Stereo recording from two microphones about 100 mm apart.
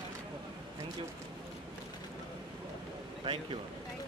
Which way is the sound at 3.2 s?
60° right (ahead or behind).